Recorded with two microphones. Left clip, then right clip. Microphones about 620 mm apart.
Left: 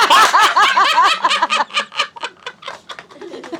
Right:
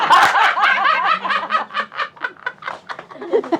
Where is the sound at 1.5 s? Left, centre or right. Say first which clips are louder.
Left 3 dB; centre.